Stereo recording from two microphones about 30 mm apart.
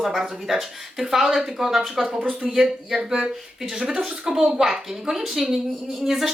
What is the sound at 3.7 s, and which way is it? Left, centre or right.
A woman's voice, right.